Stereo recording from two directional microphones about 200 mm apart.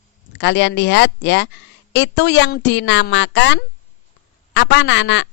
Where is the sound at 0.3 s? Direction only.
60° left (ahead or behind).